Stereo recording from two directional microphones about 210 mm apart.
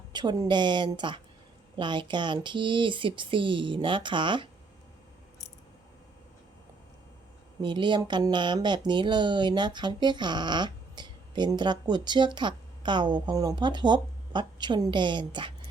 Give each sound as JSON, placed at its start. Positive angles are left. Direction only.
{"t": 0.1, "sound": "speech", "side_deg": -20}
{"t": 7.6, "sound": "speech", "side_deg": -20}